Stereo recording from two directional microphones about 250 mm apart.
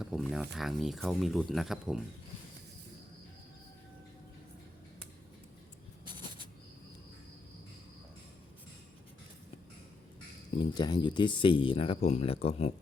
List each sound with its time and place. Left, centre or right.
0.0 s speech: centre
10.6 s speech: centre